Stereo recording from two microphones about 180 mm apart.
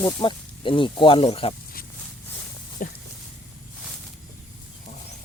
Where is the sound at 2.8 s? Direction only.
50° left (ahead or behind).